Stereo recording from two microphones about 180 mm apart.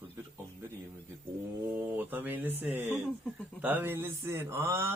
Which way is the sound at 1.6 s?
10° right (ahead or behind).